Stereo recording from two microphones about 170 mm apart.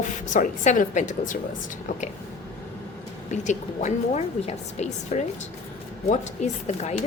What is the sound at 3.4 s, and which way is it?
A woman's voice, 45° left (ahead or behind).